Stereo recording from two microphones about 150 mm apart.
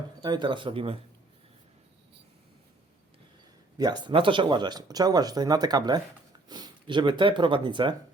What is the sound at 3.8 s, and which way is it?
Speech, 30° right (ahead or behind).